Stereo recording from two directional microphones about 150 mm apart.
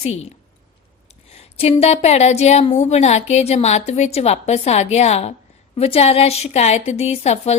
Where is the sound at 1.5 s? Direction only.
40° left (ahead or behind).